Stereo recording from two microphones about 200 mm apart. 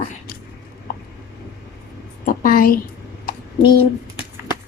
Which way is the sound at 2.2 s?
45° left (ahead or behind).